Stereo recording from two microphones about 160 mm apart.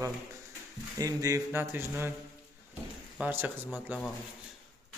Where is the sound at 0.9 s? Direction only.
20° right (ahead or behind).